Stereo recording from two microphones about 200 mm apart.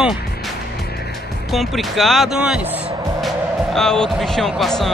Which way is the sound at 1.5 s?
Centre (ahead or behind).